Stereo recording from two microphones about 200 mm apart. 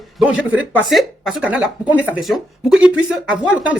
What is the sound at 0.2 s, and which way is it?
Speech, 5° right (ahead or behind).